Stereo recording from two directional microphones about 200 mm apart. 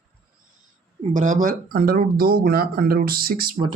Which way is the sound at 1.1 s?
40° right (ahead or behind).